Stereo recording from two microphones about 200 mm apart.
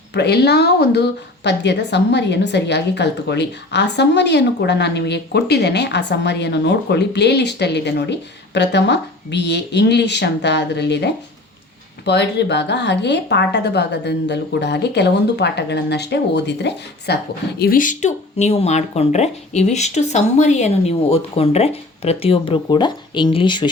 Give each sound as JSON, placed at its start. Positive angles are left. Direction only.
{"t": 0.1, "sound": "a woman's voice", "side_deg": 55}
{"t": 17.6, "sound": "speech", "side_deg": 45}